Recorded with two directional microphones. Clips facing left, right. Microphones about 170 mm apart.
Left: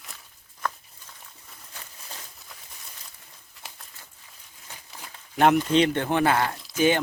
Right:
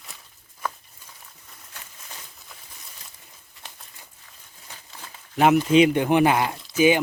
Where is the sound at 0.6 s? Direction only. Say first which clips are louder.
Even; 10° right (ahead or behind).